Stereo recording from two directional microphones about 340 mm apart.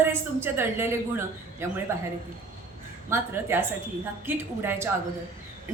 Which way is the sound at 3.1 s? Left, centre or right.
Centre.